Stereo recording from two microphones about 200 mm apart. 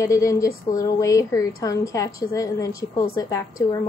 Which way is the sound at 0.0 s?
15° left (ahead or behind).